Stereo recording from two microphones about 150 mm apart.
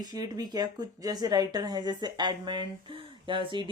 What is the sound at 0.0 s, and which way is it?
A woman's voice, 25° right (ahead or behind).